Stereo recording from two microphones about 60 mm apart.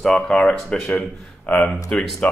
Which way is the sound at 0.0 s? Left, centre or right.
Centre.